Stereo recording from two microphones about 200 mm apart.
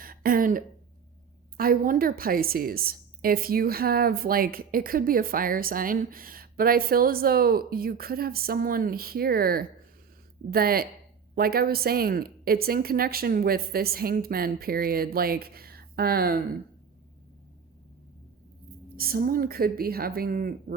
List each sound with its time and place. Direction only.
0.0 s throat clearing: 45° right (ahead or behind)
1.5 s a woman's voice: 45° right (ahead or behind)
18.9 s a woman's voice: 45° right (ahead or behind)